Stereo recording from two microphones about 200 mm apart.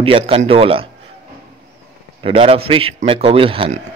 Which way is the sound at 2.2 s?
30° right (ahead or behind).